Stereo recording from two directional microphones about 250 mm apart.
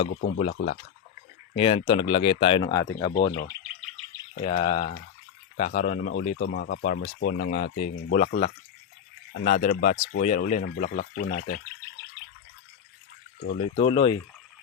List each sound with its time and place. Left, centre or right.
0.1 s speech: left
0.3 s speech: left
4.4 s speech: left
6.3 s speech: left
9.3 s speech: left
13.8 s speech: left